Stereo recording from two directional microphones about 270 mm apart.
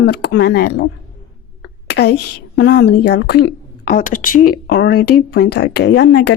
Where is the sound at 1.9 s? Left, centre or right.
Left.